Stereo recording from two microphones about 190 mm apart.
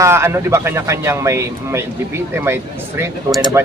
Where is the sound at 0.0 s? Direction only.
15° right (ahead or behind).